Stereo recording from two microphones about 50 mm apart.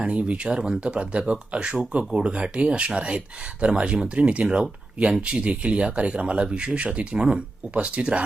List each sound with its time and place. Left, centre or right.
0.0 s speech: right